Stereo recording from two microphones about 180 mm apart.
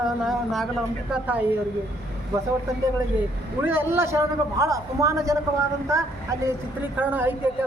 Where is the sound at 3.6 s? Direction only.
10° right (ahead or behind).